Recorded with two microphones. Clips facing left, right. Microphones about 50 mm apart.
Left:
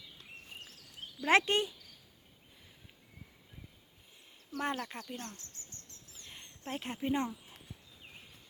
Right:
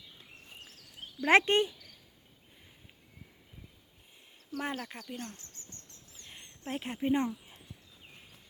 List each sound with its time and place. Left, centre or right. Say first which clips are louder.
1.2 s speech: right 4 dB; right
4.6 s speech: left 2 dB; centre
6.2 s a sound: right 2 dB; centre